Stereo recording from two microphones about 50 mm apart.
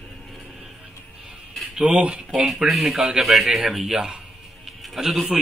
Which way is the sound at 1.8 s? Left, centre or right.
Right.